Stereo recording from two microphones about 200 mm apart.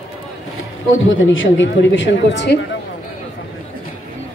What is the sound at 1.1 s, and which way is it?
Speech, 75° left (ahead or behind).